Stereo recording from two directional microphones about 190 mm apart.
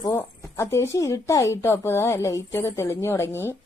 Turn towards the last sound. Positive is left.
turn(degrees=10)  # may be behind; listen again after turning